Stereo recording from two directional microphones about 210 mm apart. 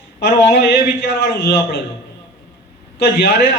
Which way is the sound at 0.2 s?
50° left (ahead or behind).